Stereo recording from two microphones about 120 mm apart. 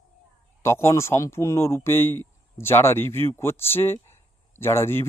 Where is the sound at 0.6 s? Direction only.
20° left (ahead or behind).